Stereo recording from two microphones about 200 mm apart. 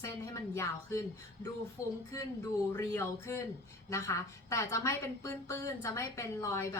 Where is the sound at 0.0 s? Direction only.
15° left (ahead or behind).